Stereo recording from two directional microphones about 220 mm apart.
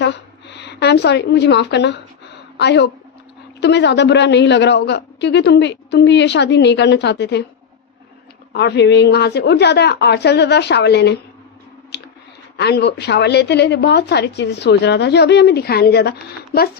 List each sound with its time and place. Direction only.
0.0 s a woman's voice: 50° left (ahead or behind)
8.5 s a man's voice: 50° left (ahead or behind)
11.9 s a sound: 50° left (ahead or behind)
12.5 s a man's voice: 50° left (ahead or behind)